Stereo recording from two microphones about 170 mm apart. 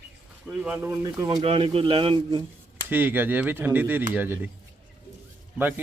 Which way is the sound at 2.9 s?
10° right (ahead or behind).